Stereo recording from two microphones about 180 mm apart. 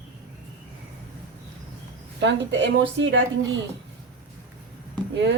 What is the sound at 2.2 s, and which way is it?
A woman's voice, 80° right.